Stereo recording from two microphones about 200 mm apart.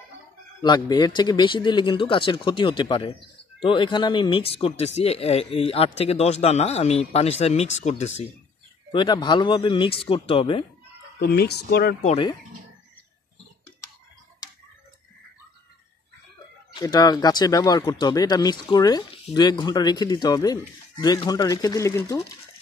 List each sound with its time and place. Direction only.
0.6 s speech: 20° left (ahead or behind)
8.9 s speech: 20° left (ahead or behind)
11.1 s speech: 55° left (ahead or behind)
12.0 s speech: 35° left (ahead or behind)
16.7 s speech: 20° left (ahead or behind)